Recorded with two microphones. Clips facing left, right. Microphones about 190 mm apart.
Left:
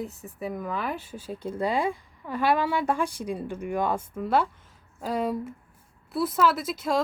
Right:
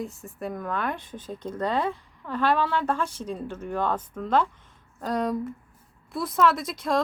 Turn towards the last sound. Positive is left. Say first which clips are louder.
# even
turn(degrees=5)  # may be behind; listen again after turning